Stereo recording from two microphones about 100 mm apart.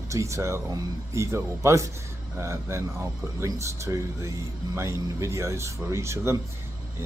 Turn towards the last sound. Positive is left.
turn(degrees=-30)  # may be behind; listen again after turning